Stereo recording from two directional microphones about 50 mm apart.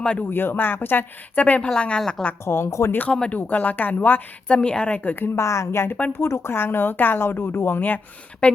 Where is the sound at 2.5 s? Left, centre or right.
Left.